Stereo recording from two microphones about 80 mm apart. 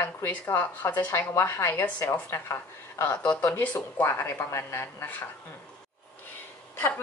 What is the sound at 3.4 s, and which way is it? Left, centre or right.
Speech, left.